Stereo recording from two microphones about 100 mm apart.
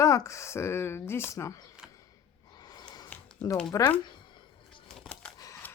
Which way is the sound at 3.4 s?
10° left (ahead or behind).